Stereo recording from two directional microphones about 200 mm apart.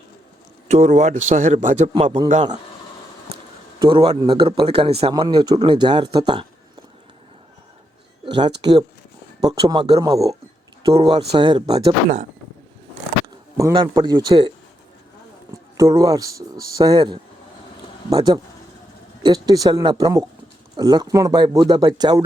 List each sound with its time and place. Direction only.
0.7 s a man's voice: 35° right (ahead or behind)
3.8 s a man's voice: 25° right (ahead or behind)
8.2 s a man's voice: 25° right (ahead or behind)
13.2 s speech: 20° right (ahead or behind)
15.8 s a man's voice: 15° right (ahead or behind)